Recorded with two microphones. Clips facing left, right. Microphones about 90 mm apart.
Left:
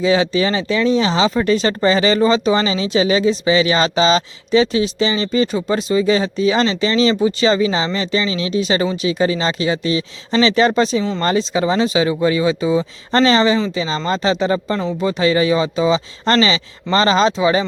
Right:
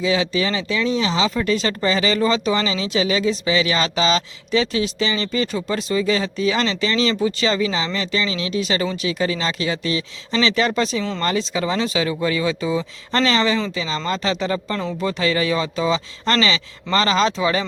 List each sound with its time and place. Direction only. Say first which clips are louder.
0.0 s speech: left 5 dB; 35° left (ahead or behind)